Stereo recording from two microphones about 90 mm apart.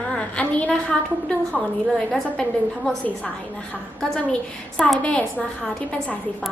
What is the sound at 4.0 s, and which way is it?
A woman's voice, 10° left (ahead or behind).